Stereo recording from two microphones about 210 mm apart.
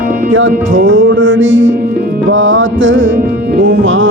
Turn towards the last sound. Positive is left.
turn(degrees=-60)  # may be behind; listen again after turning